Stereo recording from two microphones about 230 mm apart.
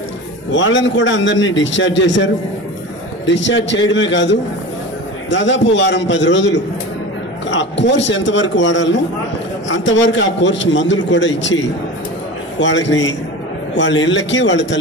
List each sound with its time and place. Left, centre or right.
0.5 s a man's voice: left